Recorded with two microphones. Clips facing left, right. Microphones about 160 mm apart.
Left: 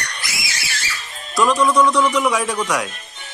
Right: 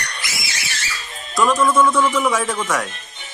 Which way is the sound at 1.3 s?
Centre (ahead or behind).